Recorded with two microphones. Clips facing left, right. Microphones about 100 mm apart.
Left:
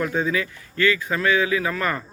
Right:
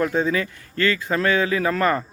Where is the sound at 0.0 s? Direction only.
30° right (ahead or behind).